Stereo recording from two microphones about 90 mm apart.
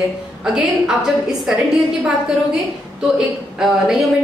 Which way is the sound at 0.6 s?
5° right (ahead or behind).